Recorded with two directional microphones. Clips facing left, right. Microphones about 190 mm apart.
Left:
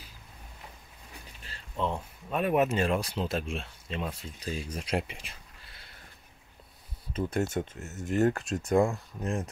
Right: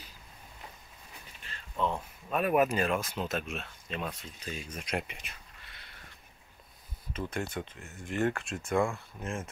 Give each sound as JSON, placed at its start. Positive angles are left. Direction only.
{"t": 1.4, "sound": "speech", "side_deg": 35}
{"t": 7.1, "sound": "speech", "side_deg": 35}